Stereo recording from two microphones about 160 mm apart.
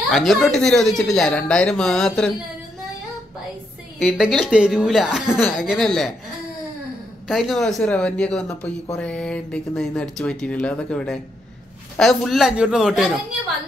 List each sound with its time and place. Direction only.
0.1 s speech: centre (ahead or behind)
4.0 s speech: 5° right (ahead or behind)
7.2 s speech: centre (ahead or behind)